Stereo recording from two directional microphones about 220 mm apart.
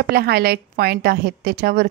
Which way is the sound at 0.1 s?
45° right (ahead or behind).